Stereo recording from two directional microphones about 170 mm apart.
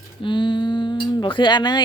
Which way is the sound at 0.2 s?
30° left (ahead or behind).